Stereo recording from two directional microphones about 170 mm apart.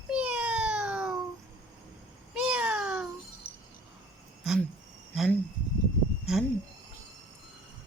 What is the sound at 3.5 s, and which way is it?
Chink, 65° left (ahead or behind).